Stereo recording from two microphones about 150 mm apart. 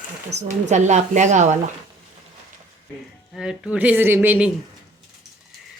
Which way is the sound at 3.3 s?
5° right (ahead or behind).